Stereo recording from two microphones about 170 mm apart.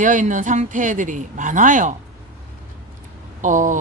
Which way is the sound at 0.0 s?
50° right (ahead or behind).